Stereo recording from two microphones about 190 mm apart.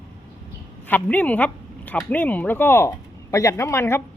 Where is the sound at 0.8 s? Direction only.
10° left (ahead or behind).